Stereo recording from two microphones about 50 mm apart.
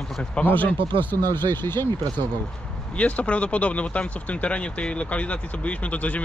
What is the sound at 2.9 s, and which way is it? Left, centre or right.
Speech, left.